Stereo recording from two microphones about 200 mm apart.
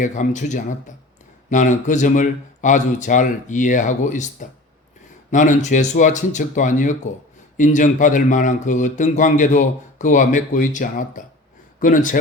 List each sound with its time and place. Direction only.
0.0 s speech: 40° left (ahead or behind)